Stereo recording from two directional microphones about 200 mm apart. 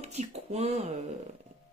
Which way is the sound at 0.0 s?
35° right (ahead or behind).